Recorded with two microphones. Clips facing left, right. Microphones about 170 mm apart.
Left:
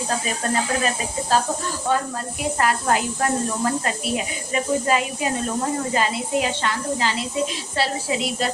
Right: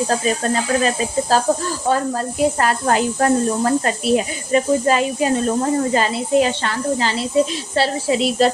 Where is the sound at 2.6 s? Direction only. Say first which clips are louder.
Right 3 dB; 35° right (ahead or behind).